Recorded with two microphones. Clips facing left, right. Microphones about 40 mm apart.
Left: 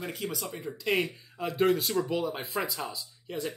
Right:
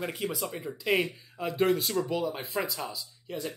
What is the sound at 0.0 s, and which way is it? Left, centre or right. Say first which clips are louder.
Speech: right 2 dB; centre.